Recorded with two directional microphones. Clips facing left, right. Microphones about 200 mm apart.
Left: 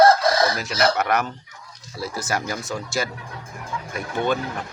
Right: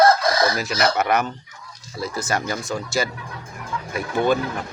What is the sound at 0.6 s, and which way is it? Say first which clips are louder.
Speech: even; 5° right (ahead or behind).